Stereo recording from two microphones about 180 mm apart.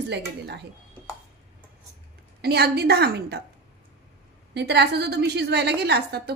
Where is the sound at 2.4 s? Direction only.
65° right (ahead or behind).